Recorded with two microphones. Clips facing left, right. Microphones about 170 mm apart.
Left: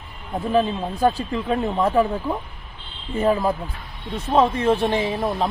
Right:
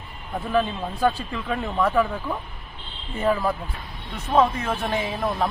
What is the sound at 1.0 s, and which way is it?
Speech, 35° left (ahead or behind).